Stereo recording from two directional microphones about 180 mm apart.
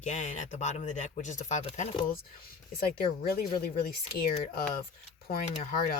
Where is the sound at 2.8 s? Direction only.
55° left (ahead or behind).